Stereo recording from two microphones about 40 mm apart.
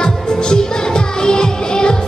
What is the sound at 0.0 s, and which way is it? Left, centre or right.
Music, centre.